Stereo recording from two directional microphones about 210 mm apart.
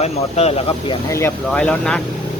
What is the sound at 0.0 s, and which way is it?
Speech, 30° left (ahead or behind).